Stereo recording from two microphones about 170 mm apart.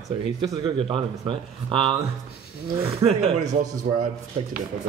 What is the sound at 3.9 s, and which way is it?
Speech, 50° right (ahead or behind).